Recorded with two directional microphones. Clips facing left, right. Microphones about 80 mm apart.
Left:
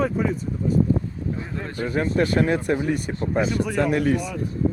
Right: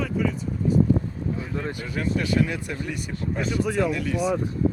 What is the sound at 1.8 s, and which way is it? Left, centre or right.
Speech, left.